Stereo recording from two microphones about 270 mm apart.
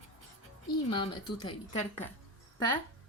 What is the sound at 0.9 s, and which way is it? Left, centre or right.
Speech, centre.